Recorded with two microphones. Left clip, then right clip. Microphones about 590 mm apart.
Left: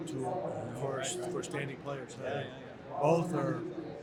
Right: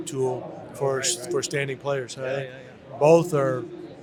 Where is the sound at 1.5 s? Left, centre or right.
Right.